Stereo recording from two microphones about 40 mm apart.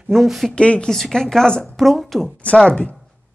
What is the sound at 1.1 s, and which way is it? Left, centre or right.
Speech, centre.